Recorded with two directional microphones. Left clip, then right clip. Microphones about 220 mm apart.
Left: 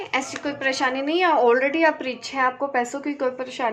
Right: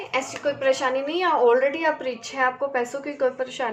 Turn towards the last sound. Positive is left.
turn(degrees=40)  # may be behind; listen again after turning